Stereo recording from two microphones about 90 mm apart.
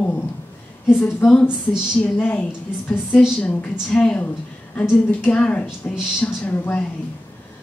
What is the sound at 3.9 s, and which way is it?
A woman's voice, 10° left (ahead or behind).